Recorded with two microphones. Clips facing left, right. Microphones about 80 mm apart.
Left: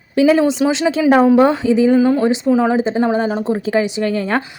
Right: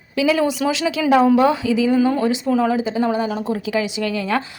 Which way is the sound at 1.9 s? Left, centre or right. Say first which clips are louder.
Left 4 dB; centre.